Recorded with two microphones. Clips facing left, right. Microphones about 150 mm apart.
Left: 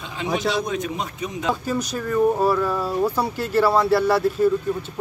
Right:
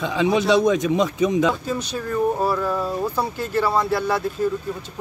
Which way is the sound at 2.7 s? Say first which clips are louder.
Left 1 dB; 10° left (ahead or behind).